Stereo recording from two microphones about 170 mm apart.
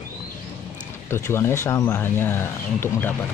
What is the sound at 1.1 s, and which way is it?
Speech, 15° left (ahead or behind).